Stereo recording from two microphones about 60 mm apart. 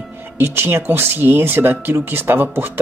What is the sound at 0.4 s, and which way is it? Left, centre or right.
Speech, right.